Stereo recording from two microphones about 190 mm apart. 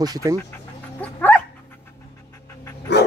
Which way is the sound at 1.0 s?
10° left (ahead or behind).